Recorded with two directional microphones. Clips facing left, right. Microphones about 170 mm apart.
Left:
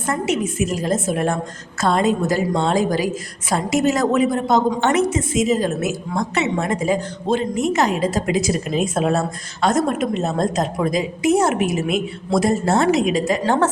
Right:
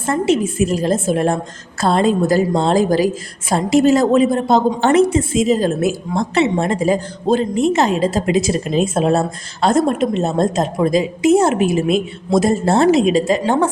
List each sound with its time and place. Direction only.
0.1 s a woman's voice: 30° right (ahead or behind)